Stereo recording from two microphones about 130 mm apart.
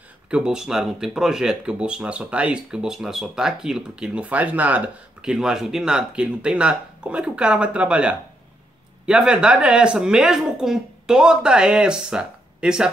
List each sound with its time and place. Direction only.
0.3 s speech: 5° right (ahead or behind)